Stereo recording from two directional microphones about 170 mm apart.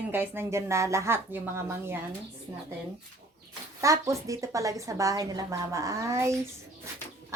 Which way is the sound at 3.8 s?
20° right (ahead or behind).